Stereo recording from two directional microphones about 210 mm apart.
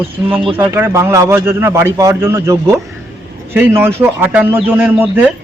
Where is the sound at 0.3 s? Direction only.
25° right (ahead or behind).